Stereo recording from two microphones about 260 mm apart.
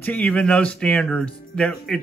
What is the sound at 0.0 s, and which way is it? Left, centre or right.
Speech, centre.